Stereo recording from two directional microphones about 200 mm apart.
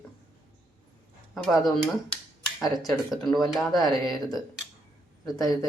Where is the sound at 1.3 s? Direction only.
Centre (ahead or behind).